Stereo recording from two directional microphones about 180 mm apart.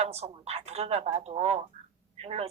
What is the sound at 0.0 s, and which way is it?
Speech, 35° right (ahead or behind).